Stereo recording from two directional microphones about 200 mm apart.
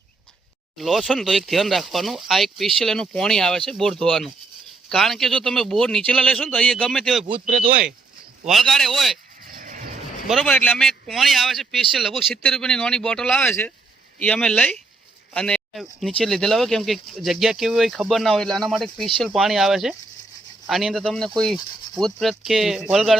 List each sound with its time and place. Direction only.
0.8 s speech: centre (ahead or behind)
7.4 s speech: 40° right (ahead or behind)
8.4 s speech: centre (ahead or behind)
9.6 s vehicle: 40° right (ahead or behind)
10.2 s speech: centre (ahead or behind)